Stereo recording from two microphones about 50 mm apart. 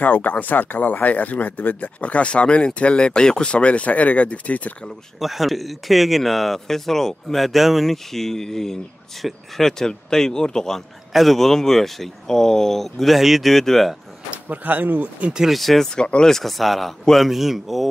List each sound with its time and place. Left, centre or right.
0.0 s speech: left
2.0 s speech: left
5.2 s speech: centre
14.5 s speech: right
15.5 s speech: centre
15.9 s speech: centre
16.3 s speech: centre